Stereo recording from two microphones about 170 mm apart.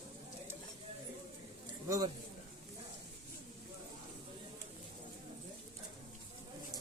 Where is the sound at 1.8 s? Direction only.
20° right (ahead or behind).